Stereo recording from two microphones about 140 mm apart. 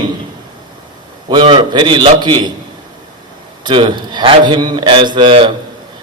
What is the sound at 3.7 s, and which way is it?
A man's voice, 35° right (ahead or behind).